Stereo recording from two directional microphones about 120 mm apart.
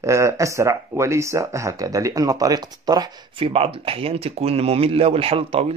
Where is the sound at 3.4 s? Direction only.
55° right (ahead or behind).